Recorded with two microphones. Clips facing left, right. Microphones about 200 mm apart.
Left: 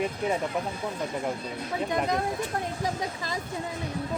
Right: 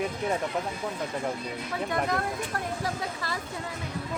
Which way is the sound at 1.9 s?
20° left (ahead or behind).